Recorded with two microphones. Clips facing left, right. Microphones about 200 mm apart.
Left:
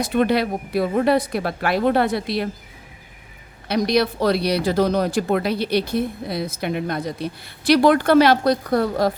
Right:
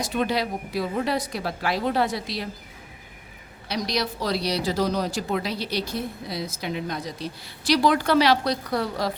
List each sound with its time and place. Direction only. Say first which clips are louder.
0.0 s speech: left 6 dB; 60° left (ahead or behind)
3.7 s speech: left 8 dB; 55° left (ahead or behind)